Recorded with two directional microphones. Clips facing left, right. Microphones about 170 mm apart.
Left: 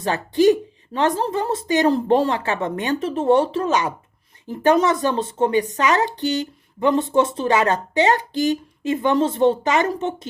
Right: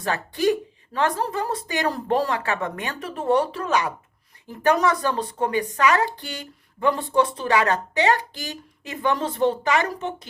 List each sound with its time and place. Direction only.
0.0 s speech: 25° left (ahead or behind)